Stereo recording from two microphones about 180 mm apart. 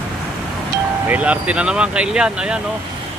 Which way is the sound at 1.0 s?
10° right (ahead or behind).